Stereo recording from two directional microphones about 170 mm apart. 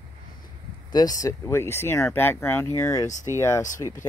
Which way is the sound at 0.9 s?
20° left (ahead or behind).